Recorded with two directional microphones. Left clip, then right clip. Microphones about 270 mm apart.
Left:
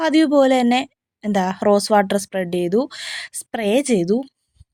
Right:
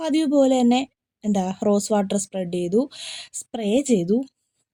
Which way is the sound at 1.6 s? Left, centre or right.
Left.